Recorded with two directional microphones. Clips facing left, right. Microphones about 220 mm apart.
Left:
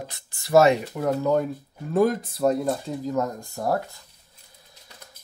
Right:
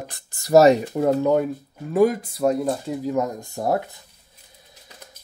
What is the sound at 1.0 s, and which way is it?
Speech, 25° right (ahead or behind).